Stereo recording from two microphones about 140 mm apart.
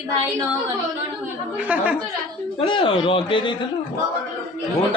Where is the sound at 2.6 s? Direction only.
35° left (ahead or behind).